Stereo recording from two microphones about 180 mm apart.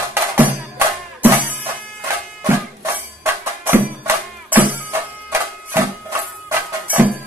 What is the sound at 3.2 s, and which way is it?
Music, 10° right (ahead or behind).